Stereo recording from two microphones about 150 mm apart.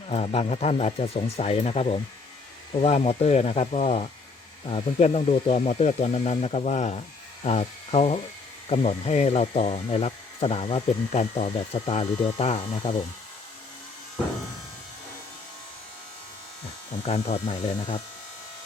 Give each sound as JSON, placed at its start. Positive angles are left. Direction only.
{"t": 0.1, "sound": "speech", "side_deg": 45}
{"t": 17.1, "sound": "speech", "side_deg": 45}